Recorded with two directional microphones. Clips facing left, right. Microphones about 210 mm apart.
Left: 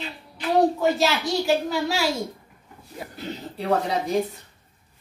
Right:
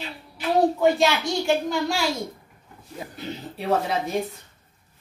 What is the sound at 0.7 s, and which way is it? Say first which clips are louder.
Speech: right 2 dB; 5° left (ahead or behind).